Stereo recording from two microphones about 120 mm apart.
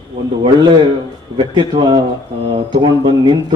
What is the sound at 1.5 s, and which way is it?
A man's voice, 40° right (ahead or behind).